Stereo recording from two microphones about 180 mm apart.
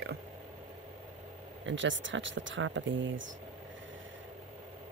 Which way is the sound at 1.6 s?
90° right.